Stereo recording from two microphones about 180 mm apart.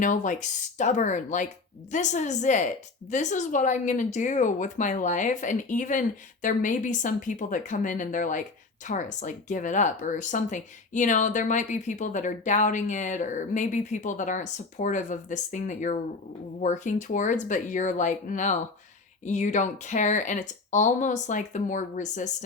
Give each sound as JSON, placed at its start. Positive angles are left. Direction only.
{"t": 0.0, "sound": "a woman's voice", "side_deg": 45}